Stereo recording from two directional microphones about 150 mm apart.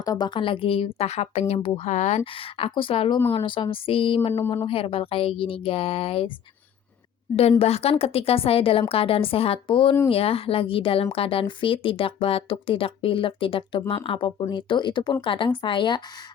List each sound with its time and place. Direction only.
0.0 s speech: 25° left (ahead or behind)
7.6 s speech: 40° left (ahead or behind)